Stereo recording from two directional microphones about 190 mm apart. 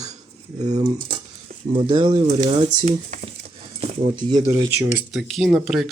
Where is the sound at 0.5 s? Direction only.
35° right (ahead or behind).